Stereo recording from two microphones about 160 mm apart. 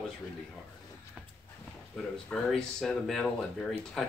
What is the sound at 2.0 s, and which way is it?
Speech, 5° left (ahead or behind).